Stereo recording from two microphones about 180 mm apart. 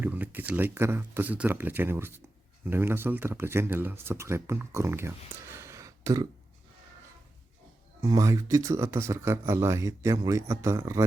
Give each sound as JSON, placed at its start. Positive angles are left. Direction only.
{"t": 0.0, "sound": "speech", "side_deg": -10}
{"t": 8.0, "sound": "speech", "side_deg": -20}